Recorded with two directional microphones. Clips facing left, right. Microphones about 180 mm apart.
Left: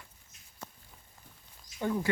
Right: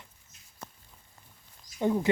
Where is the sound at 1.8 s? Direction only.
20° right (ahead or behind).